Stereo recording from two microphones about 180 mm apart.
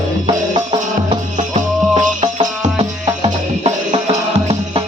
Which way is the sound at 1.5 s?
35° right (ahead or behind).